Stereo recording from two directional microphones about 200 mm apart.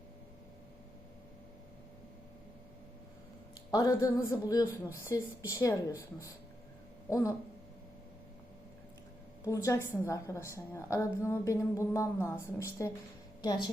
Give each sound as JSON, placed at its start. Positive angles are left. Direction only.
{"t": 3.7, "sound": "a woman's voice", "side_deg": 20}
{"t": 9.4, "sound": "a woman's voice", "side_deg": 15}
{"t": 13.4, "sound": "a woman's voice", "side_deg": 20}